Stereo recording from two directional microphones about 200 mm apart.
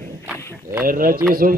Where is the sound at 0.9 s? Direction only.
45° right (ahead or behind).